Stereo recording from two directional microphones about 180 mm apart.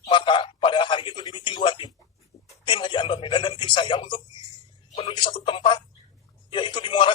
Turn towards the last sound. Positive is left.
turn(degrees=25)  # may be behind; listen again after turning